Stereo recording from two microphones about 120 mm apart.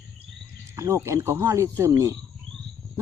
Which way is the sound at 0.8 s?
25° right (ahead or behind).